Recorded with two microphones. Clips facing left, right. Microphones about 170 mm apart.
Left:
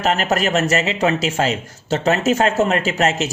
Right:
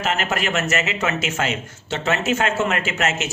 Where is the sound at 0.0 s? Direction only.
40° left (ahead or behind).